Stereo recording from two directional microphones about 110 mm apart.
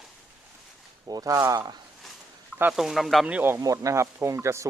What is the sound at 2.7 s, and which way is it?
Speech, centre (ahead or behind).